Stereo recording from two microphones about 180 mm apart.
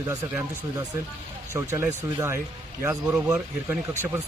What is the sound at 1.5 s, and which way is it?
Speech, 15° right (ahead or behind).